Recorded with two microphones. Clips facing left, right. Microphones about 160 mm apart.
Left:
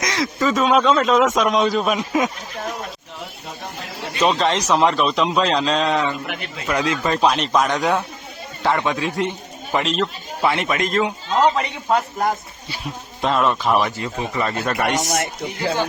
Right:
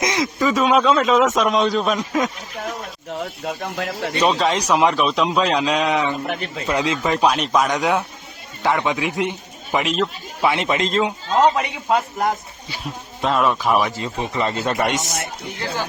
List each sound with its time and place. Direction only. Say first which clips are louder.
0.0 s speech: right 1 dB; 20° right (ahead or behind); by 2.3 s 10° left (ahead or behind)
4.2 s speech: left 1 dB; centre (ahead or behind)
6.2 s speech: right 2 dB; 35° right (ahead or behind)
6.7 s speech: even; 20° right (ahead or behind)
7.2 s speech: even; 5° right (ahead or behind)
8.6 s speech: even; 15° right (ahead or behind)
11.5 s speech: even; centre (ahead or behind)
14.0 s speech: right 1 dB; 25° right (ahead or behind)
14.9 s speech: left 4 dB; 55° left (ahead or behind)